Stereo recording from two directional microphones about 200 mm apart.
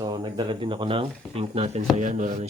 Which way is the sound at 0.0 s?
20° right (ahead or behind).